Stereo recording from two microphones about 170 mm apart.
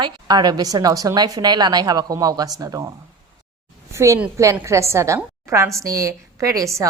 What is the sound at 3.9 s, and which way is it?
A woman's voice, 15° right (ahead or behind).